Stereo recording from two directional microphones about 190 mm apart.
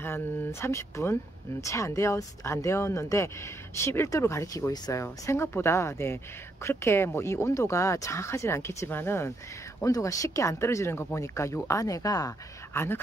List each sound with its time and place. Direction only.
0.0 s speech: 15° left (ahead or behind)